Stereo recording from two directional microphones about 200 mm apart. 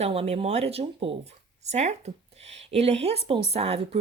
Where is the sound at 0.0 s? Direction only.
30° right (ahead or behind).